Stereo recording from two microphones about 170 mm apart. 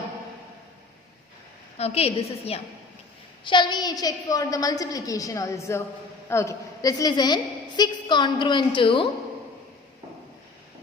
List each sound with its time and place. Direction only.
1.8 s a woman's voice: 35° left (ahead or behind)